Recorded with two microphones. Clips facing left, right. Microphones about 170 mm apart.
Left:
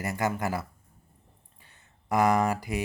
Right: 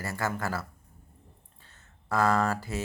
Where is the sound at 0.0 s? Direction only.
20° left (ahead or behind).